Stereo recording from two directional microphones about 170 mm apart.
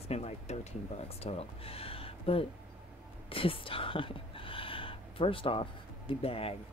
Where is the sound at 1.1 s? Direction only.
35° left (ahead or behind).